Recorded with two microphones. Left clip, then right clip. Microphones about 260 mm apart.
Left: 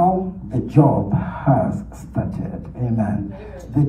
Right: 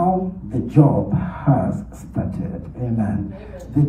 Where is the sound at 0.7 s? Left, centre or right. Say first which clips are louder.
Left 1 dB; left.